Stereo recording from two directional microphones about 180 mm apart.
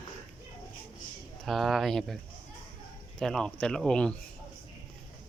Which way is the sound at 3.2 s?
5° left (ahead or behind).